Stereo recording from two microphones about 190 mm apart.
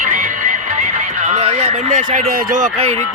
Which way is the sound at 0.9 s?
40° right (ahead or behind).